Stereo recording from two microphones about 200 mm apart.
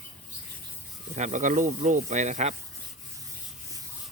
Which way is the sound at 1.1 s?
40° right (ahead or behind).